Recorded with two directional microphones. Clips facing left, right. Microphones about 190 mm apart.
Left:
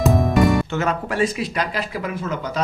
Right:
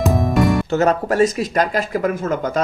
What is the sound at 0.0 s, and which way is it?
Music, centre (ahead or behind).